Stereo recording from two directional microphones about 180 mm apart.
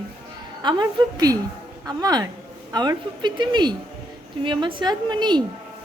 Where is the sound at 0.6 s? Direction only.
25° right (ahead or behind).